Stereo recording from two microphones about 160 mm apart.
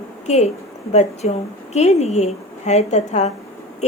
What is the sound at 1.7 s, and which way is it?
A woman's voice, 40° left (ahead or behind).